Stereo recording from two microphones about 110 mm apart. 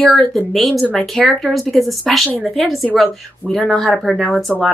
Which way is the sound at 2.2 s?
15° left (ahead or behind).